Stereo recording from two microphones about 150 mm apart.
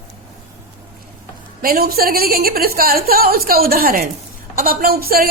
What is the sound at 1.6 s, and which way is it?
A woman's voice, 90° right.